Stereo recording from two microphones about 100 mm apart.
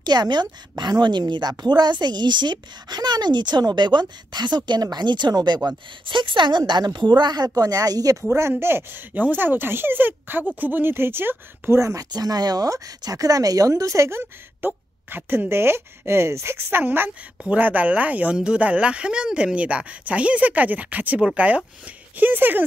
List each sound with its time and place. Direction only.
0.0 s a woman's voice: 45° right (ahead or behind)
6.0 s a woman's voice: 55° right (ahead or behind); by 8.2 s 40° right (ahead or behind)
8.2 s speech: 25° right (ahead or behind)